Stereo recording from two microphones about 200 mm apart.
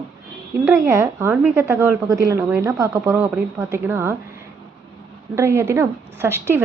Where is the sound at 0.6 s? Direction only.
15° right (ahead or behind).